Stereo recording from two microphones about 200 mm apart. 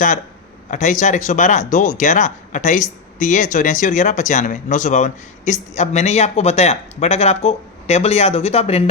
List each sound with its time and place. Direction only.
0.7 s speech: 35° left (ahead or behind)